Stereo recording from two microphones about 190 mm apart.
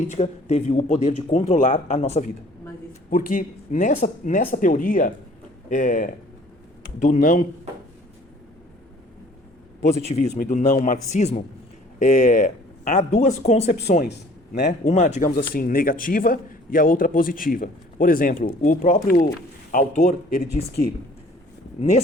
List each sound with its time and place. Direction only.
0.1 s speech: 35° left (ahead or behind)
3.1 s a man's voice: 50° left (ahead or behind)
9.8 s a man's voice: 35° left (ahead or behind); by 19.3 s 50° left (ahead or behind)
19.7 s speech: 40° left (ahead or behind)